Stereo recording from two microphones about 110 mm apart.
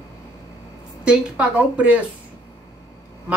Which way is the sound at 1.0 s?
10° right (ahead or behind).